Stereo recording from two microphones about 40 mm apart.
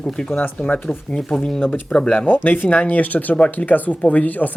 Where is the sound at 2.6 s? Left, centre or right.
Left.